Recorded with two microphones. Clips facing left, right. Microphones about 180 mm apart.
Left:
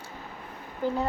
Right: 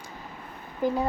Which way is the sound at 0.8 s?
15° right (ahead or behind).